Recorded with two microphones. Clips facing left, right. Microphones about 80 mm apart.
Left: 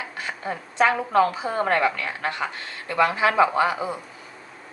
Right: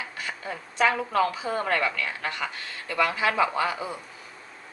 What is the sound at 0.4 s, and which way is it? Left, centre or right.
A woman's voice, left.